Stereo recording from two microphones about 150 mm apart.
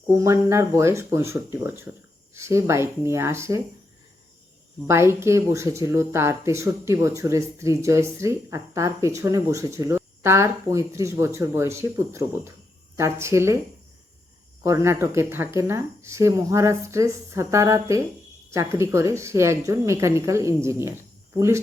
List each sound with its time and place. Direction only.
0.1 s speech: 20° right (ahead or behind)
4.9 s speech: 15° right (ahead or behind)
14.6 s speech: 20° right (ahead or behind)